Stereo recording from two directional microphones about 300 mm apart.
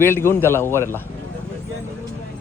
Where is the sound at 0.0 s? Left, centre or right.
Centre.